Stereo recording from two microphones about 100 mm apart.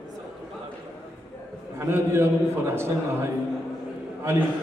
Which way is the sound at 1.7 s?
25° right (ahead or behind).